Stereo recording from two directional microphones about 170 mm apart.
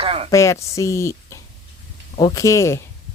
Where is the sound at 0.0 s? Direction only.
35° right (ahead or behind).